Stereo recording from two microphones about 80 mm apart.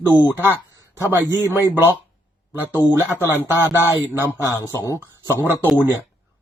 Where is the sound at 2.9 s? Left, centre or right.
Right.